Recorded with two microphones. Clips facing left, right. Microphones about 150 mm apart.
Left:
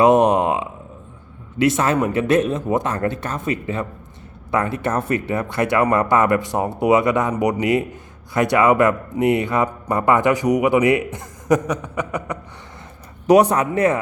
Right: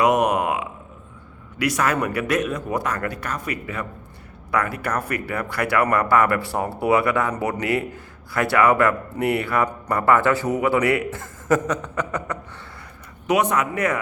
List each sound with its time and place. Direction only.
0.0 s a sound: 30° left (ahead or behind)
1.5 s a man's voice: 25° left (ahead or behind)
13.2 s speech: 35° left (ahead or behind)